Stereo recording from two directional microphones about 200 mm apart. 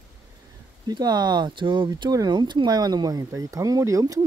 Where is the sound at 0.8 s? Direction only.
20° right (ahead or behind).